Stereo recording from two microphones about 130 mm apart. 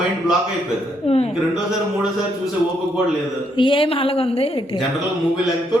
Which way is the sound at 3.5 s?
40° left (ahead or behind).